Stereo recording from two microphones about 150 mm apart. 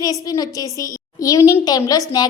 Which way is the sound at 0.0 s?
25° left (ahead or behind).